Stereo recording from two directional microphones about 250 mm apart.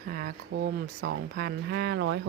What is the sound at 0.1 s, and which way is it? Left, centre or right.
Speech, right.